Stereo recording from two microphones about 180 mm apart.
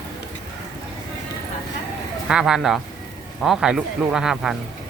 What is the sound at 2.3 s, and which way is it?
Speech, 5° right (ahead or behind).